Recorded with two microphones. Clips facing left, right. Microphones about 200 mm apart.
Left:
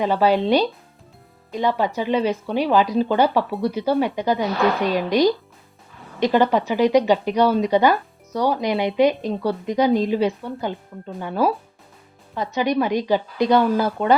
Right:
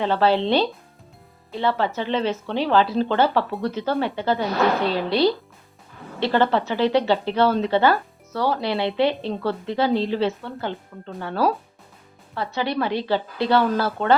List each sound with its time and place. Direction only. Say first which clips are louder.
0.0 s speech: left 1 dB; 10° left (ahead or behind)